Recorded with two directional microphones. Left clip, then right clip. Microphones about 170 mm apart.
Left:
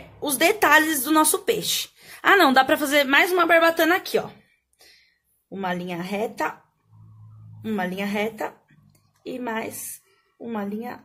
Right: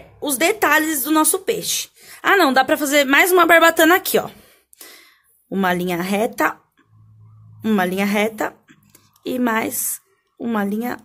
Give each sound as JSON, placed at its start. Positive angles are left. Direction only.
{"t": 0.2, "sound": "a woman's voice", "side_deg": -20}
{"t": 7.6, "sound": "speech", "side_deg": -45}